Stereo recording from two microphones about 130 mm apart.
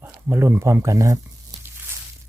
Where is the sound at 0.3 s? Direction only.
20° right (ahead or behind).